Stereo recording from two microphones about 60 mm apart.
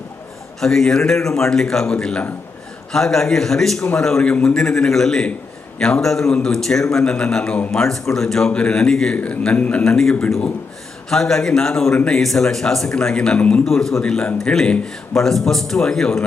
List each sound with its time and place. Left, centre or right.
0.6 s a man's voice: centre
9.1 s a man's voice: left
9.8 s a man's voice: centre
13.7 s a man's voice: centre